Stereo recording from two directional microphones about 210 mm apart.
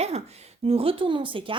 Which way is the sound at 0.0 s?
30° right (ahead or behind).